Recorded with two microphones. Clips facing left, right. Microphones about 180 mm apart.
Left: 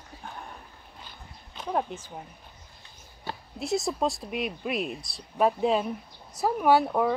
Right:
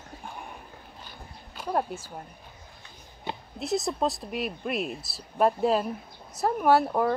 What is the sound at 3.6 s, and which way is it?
Speech, centre (ahead or behind).